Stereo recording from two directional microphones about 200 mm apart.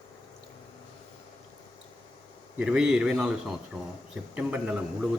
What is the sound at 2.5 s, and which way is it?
Speech, 5° right (ahead or behind).